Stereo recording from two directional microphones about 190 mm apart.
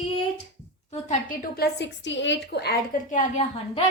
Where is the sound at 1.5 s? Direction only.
60° left (ahead or behind); by 3.8 s 40° left (ahead or behind).